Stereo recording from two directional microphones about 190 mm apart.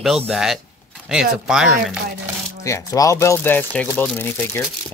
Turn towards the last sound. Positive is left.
turn(degrees=10)  # may be behind; listen again after turning